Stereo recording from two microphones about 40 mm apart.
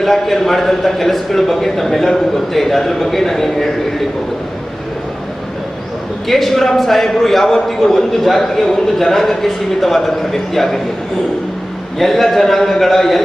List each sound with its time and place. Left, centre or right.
0.0 s a man's voice: centre
6.2 s a man's voice: centre
11.9 s a man's voice: centre